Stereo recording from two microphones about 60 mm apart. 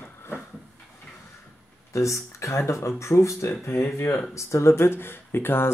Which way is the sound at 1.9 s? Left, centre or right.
Left.